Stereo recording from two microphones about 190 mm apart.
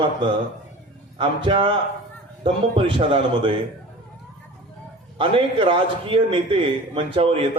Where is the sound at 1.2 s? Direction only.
25° right (ahead or behind).